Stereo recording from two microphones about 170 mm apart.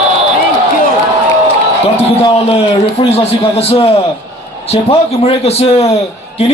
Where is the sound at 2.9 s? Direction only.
35° left (ahead or behind).